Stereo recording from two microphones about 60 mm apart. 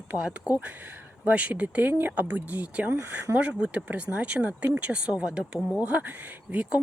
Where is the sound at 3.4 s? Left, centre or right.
Centre.